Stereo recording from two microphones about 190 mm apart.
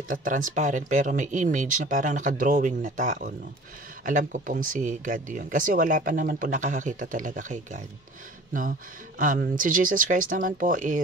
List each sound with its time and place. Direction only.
0.1 s speech: 45° right (ahead or behind)
9.2 s speech: 45° right (ahead or behind)